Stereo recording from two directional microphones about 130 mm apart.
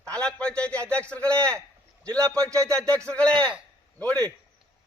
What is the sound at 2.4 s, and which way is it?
Speech, 25° right (ahead or behind).